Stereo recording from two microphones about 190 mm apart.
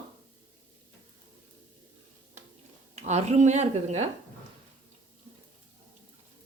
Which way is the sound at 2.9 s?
35° right (ahead or behind).